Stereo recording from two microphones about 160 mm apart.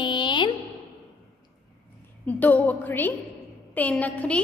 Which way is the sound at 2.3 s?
10° left (ahead or behind).